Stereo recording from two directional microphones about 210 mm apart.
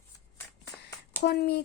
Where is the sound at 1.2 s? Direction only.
50° left (ahead or behind).